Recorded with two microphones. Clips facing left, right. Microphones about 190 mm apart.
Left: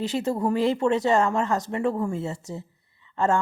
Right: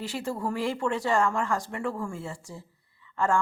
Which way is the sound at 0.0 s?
20° left (ahead or behind).